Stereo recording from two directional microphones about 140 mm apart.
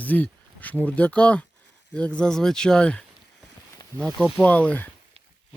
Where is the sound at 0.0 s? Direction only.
10° left (ahead or behind).